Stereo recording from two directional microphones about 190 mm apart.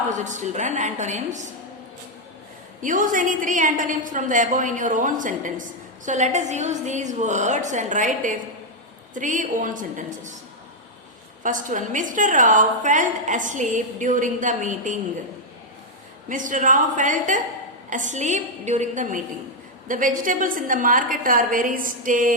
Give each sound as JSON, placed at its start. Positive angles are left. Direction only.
{"t": 0.1, "sound": "a woman's voice", "side_deg": -40}
{"t": 2.8, "sound": "a woman's voice", "side_deg": -45}
{"t": 11.4, "sound": "a woman's voice", "side_deg": -45}
{"t": 16.3, "sound": "a woman's voice", "side_deg": -45}